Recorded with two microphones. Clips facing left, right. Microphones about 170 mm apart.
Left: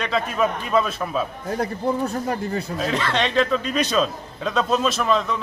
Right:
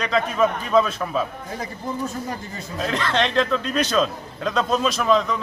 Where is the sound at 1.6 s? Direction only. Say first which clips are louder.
Left 5 dB; 65° left (ahead or behind).